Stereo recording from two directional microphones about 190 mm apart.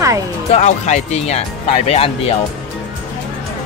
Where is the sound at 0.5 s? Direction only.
40° left (ahead or behind).